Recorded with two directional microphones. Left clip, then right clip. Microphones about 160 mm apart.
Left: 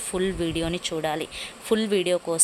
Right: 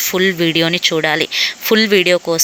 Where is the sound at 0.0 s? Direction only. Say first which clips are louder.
Right 12 dB; 20° right (ahead or behind).